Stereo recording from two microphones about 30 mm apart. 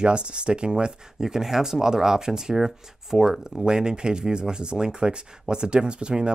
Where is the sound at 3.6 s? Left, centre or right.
Right.